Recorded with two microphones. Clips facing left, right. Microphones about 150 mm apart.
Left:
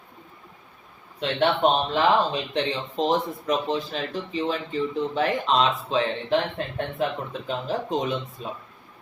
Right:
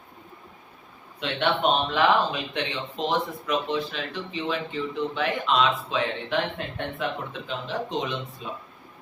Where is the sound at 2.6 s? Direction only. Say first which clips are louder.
Left 4 dB; 35° left (ahead or behind).